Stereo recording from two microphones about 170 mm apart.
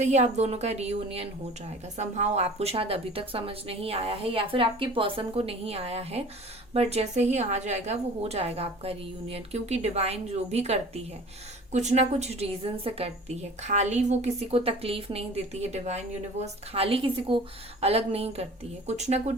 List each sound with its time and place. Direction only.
0.0 s a woman's voice: 40° right (ahead or behind)